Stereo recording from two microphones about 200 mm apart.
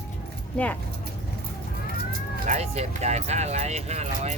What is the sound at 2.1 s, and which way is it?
Speech, 40° right (ahead or behind).